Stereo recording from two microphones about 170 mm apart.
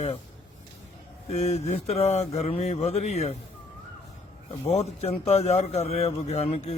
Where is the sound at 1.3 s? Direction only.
40° left (ahead or behind).